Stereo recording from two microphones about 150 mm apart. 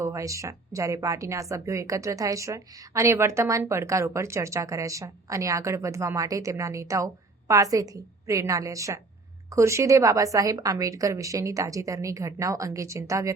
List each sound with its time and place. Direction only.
0.0 s a woman's voice: 20° right (ahead or behind)